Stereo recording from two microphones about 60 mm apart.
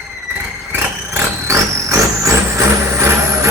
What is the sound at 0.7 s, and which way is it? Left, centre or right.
Vehicle, right.